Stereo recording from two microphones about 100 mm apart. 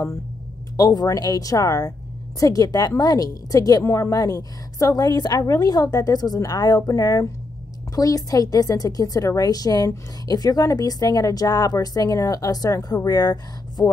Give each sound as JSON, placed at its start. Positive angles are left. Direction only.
{"t": 0.7, "sound": "a woman's voice", "side_deg": 35}